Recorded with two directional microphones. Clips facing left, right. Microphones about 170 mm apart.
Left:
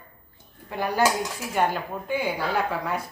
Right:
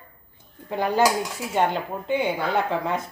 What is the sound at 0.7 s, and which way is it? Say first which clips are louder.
Speech: right 3 dB; 20° right (ahead or behind).